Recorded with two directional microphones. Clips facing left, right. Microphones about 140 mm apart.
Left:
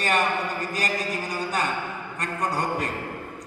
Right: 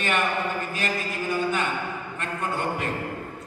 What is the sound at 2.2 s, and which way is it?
Speech, 40° left (ahead or behind).